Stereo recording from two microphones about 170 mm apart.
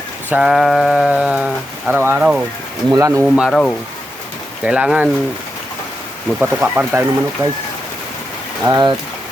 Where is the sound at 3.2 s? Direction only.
5° right (ahead or behind).